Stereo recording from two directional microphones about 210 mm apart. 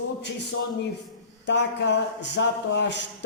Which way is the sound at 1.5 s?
55° left (ahead or behind).